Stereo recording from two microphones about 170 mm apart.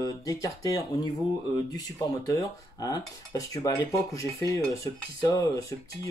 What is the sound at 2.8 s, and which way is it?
Speech, 20° left (ahead or behind).